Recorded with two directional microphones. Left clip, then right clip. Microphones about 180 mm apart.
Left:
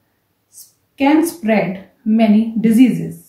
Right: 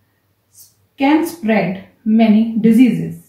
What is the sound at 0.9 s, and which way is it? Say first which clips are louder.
A woman's voice: left 1 dB; 30° left (ahead or behind).